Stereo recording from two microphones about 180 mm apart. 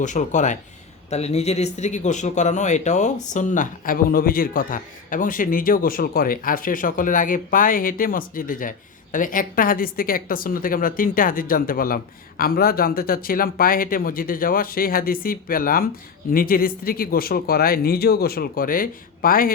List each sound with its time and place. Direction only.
0.0 s speech: 45° left (ahead or behind)